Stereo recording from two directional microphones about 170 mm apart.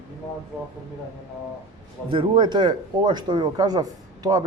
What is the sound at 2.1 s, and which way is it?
Speech, 30° right (ahead or behind).